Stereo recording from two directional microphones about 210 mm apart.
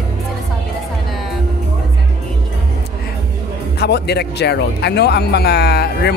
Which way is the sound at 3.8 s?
50° left (ahead or behind).